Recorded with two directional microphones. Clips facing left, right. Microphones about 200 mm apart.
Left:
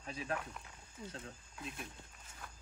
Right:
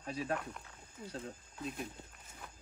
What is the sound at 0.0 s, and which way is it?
Speech, 35° right (ahead or behind).